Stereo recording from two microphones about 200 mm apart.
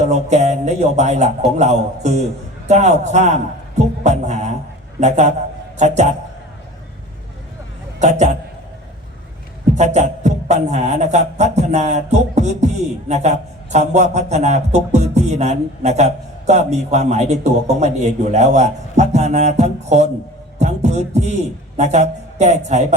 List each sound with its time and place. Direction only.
0.1 s a man's voice: 35° right (ahead or behind)
7.9 s a man's voice: 35° right (ahead or behind)
9.7 s a man's voice: 35° right (ahead or behind)